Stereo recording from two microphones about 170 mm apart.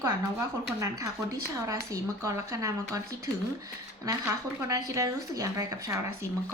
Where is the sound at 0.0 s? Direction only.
15° right (ahead or behind).